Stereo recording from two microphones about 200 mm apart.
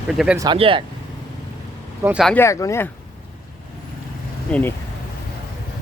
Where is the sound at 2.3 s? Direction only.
15° left (ahead or behind).